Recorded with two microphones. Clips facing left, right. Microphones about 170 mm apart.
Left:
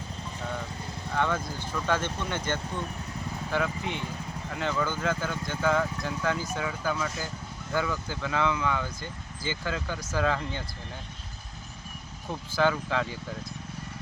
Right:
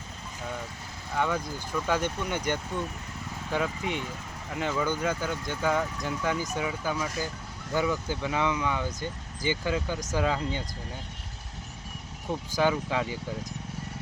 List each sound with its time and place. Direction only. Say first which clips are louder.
1.1 s speech: even; 10° right (ahead or behind)
12.5 s speech: even; 15° right (ahead or behind)